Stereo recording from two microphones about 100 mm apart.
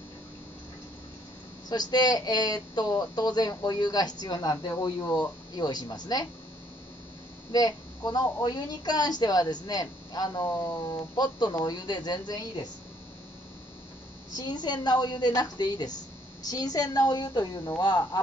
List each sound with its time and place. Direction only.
1.7 s a woman's voice: 45° left (ahead or behind)
7.5 s a woman's voice: 40° left (ahead or behind)
14.3 s a woman's voice: 45° left (ahead or behind)